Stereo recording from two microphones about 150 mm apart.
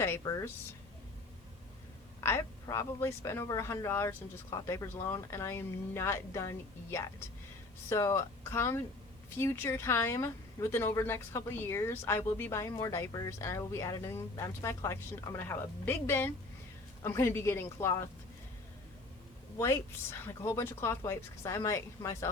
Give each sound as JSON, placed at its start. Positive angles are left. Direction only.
{"t": 0.2, "sound": "speech", "side_deg": 20}
{"t": 2.2, "sound": "speech", "side_deg": 20}
{"t": 7.9, "sound": "speech", "side_deg": 20}
{"t": 19.5, "sound": "speech", "side_deg": 15}